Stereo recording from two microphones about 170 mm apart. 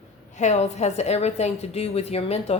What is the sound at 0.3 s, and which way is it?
A woman's voice, 40° left (ahead or behind).